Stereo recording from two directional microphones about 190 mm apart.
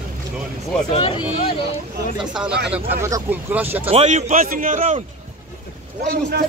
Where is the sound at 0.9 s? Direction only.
30° left (ahead or behind).